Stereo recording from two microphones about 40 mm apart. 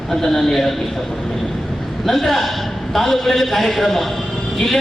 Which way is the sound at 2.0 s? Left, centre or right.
Centre.